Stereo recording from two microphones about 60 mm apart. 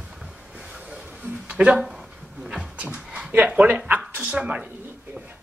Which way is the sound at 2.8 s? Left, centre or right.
Right.